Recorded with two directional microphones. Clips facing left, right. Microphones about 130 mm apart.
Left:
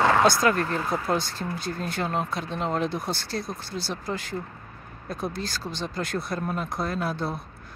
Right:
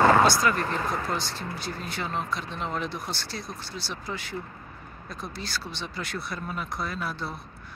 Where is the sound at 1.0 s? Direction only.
50° left (ahead or behind).